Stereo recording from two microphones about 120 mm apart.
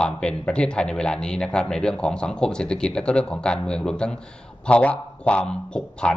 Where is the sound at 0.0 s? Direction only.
5° left (ahead or behind).